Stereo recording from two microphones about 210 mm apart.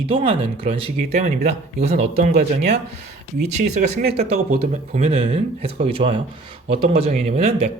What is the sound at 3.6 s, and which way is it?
Speech, 35° right (ahead or behind).